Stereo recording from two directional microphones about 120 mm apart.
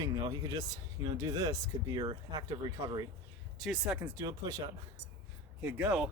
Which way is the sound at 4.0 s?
30° right (ahead or behind).